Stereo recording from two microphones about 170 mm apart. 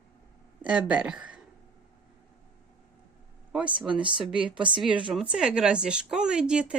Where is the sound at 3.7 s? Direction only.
30° right (ahead or behind).